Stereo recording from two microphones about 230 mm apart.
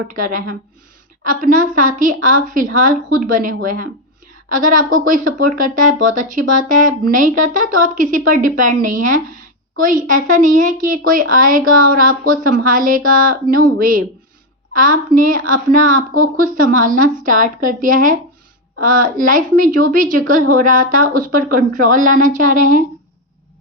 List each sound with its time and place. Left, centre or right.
0.1 s a woman's voice: right